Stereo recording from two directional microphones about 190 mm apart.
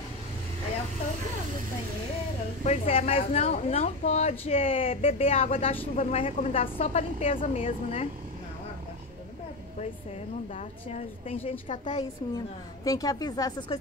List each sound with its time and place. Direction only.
2.6 s speech: 35° left (ahead or behind)
10.5 s a woman's voice: 35° left (ahead or behind)